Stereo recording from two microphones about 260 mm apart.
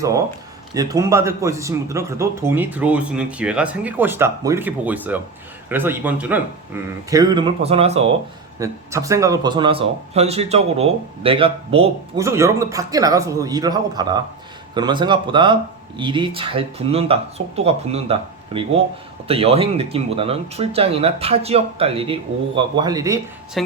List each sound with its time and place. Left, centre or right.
0.7 s speech: centre
8.5 s speech: centre
12.2 s speech: centre
23.6 s a woman's voice: centre